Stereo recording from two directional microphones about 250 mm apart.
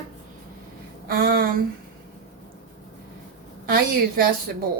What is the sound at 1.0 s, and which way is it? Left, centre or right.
Speech, right.